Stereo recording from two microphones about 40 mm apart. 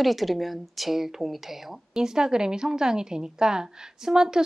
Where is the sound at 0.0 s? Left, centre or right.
Centre.